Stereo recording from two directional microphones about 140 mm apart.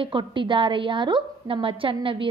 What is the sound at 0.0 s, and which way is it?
A woman's voice, 35° right (ahead or behind).